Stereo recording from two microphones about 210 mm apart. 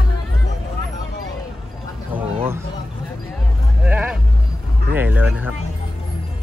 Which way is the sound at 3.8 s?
5° right (ahead or behind).